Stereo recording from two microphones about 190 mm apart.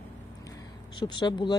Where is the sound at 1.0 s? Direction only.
25° left (ahead or behind).